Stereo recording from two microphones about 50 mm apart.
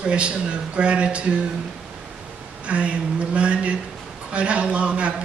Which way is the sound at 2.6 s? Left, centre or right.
Right.